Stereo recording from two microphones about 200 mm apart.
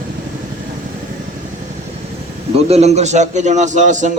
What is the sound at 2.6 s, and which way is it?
A man's voice, 30° right (ahead or behind).